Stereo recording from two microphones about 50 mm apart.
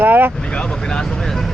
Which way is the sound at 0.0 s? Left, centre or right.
Right.